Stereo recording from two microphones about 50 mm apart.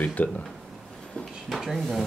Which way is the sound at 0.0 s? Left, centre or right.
Left.